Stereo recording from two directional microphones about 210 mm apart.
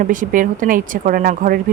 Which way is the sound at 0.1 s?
40° right (ahead or behind).